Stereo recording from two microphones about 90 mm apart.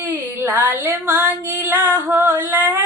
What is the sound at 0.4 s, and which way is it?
Music, 25° right (ahead or behind).